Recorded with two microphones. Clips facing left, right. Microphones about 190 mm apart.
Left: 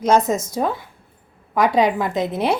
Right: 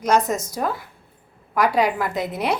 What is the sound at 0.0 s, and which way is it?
A woman's voice, 25° left (ahead or behind).